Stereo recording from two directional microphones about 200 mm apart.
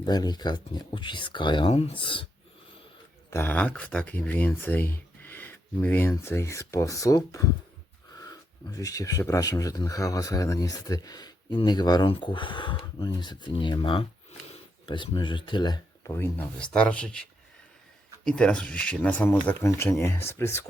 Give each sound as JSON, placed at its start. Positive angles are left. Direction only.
{"t": 0.0, "sound": "speech", "side_deg": 20}
{"t": 3.2, "sound": "speech", "side_deg": 10}
{"t": 18.3, "sound": "speech", "side_deg": 5}